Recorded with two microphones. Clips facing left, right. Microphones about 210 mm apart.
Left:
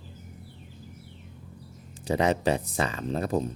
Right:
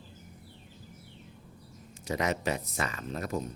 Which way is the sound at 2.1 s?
30° left (ahead or behind).